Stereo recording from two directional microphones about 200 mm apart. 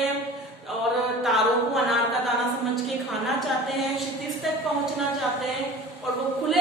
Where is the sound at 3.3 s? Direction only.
Centre (ahead or behind).